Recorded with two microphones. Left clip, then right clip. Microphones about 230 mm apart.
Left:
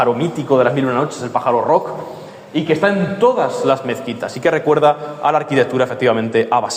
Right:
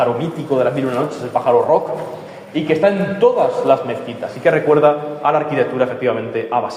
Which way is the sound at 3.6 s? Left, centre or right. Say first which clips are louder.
Right 1 dB; left.